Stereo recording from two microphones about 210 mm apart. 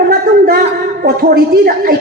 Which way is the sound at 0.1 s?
45° right (ahead or behind).